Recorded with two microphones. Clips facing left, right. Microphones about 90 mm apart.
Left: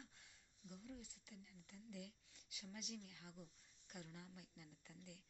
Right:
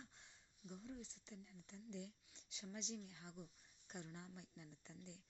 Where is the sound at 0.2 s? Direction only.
25° right (ahead or behind).